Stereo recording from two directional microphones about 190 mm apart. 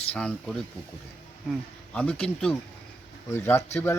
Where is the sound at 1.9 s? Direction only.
5° left (ahead or behind).